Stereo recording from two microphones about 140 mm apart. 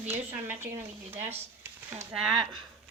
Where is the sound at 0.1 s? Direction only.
15° right (ahead or behind).